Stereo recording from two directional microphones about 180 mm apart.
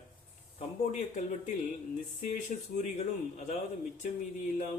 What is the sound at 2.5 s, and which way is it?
Speech, 45° left (ahead or behind).